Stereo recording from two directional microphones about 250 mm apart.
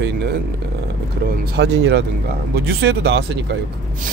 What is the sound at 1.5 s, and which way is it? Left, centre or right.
Speech, right.